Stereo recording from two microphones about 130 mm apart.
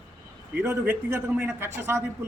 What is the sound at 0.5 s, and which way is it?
A man's voice, 15° right (ahead or behind).